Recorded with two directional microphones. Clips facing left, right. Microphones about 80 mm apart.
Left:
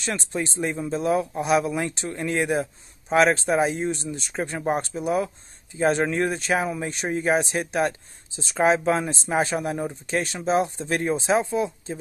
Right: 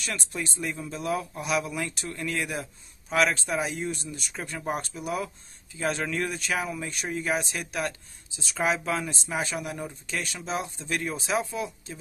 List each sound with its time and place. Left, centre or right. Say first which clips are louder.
0.0 s speech: left 6 dB; left